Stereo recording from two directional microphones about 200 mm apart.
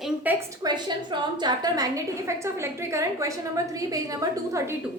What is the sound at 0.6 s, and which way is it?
A woman's voice, 20° right (ahead or behind).